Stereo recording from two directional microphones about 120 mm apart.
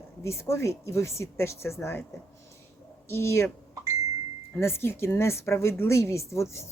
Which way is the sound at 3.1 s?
20° left (ahead or behind).